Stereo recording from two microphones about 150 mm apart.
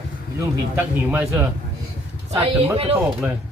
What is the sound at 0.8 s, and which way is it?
Speech, 10° right (ahead or behind).